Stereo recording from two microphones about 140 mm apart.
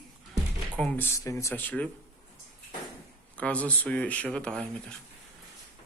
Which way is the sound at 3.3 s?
10° left (ahead or behind).